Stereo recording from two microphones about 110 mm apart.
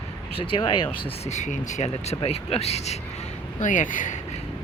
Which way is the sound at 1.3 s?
90° left.